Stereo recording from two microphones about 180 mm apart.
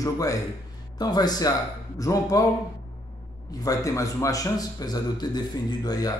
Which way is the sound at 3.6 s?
20° left (ahead or behind).